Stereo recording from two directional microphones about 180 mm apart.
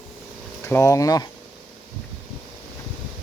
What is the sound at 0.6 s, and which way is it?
Speech, 15° left (ahead or behind).